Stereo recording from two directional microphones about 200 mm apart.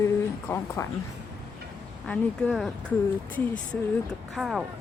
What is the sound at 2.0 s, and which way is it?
Speech, 5° left (ahead or behind).